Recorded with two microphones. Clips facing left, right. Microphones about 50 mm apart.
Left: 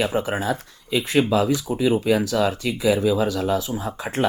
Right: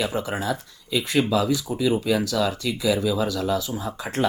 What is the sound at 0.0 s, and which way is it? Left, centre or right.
Speech, left.